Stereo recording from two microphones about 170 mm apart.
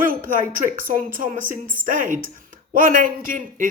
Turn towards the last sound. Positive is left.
turn(degrees=-50)  # may be behind; listen again after turning